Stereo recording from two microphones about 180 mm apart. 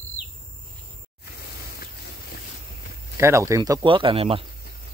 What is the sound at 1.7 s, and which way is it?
Vehicle, 60° left (ahead or behind).